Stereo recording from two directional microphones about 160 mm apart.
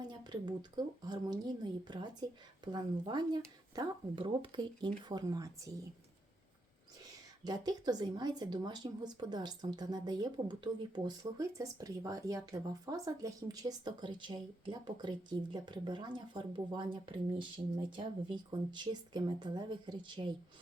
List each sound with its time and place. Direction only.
0.0 s speech: 25° right (ahead or behind)
7.0 s speech: 25° right (ahead or behind)